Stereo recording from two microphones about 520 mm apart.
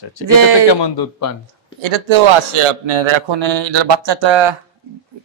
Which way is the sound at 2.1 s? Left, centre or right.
Right.